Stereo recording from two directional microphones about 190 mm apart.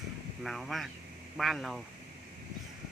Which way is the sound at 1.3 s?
Centre (ahead or behind).